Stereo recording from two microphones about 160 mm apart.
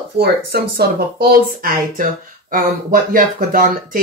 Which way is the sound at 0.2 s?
85° right.